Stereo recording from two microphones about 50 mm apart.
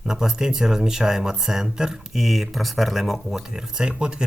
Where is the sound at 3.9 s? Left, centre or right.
Centre.